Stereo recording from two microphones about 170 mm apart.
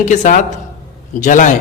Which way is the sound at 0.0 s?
45° left (ahead or behind).